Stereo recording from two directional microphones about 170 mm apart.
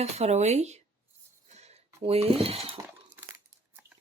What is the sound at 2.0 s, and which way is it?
Speech, 35° right (ahead or behind).